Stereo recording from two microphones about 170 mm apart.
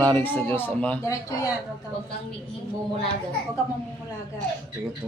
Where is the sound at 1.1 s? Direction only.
20° left (ahead or behind).